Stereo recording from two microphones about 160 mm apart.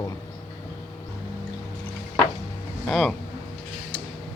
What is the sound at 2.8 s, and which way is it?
Speech, centre (ahead or behind).